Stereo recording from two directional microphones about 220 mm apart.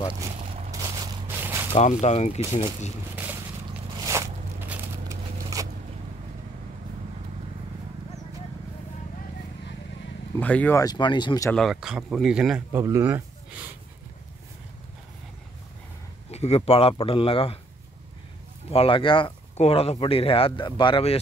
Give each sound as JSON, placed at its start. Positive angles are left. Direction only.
{"t": 0.1, "sound": "a sound", "side_deg": -15}
{"t": 1.7, "sound": "speech", "side_deg": 30}
{"t": 4.0, "sound": "a sound", "side_deg": -15}
{"t": 10.3, "sound": "speech", "side_deg": 5}
{"t": 11.5, "sound": "speech", "side_deg": 0}
{"t": 16.3, "sound": "speech", "side_deg": 30}
{"t": 18.7, "sound": "speech", "side_deg": 25}